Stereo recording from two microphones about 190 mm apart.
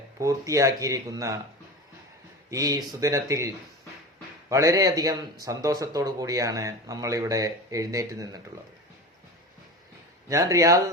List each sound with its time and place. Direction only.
0.2 s speech: 15° right (ahead or behind)
2.5 s speech: 20° right (ahead or behind)
10.2 s speech: 15° right (ahead or behind)